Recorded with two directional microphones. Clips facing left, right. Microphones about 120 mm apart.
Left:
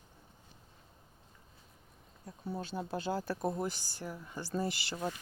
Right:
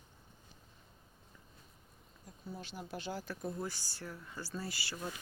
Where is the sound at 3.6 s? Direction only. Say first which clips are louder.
Left 4 dB; 15° left (ahead or behind).